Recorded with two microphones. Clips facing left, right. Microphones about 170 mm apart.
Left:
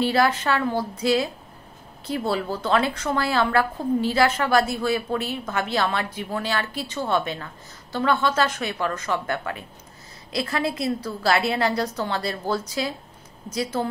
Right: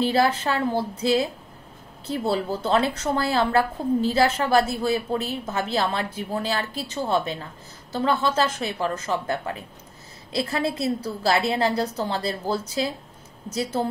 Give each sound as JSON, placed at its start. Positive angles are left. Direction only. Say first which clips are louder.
{"t": 0.0, "sound": "a woman's voice", "louder": "even", "side_deg": -35}